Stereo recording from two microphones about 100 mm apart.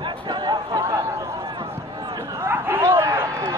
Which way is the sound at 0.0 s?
45° right (ahead or behind).